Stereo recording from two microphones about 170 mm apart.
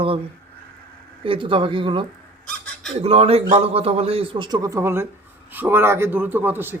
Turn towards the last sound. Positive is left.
turn(degrees=-10)  # may be behind; listen again after turning